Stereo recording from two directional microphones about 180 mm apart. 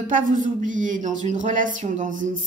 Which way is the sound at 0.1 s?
45° right (ahead or behind).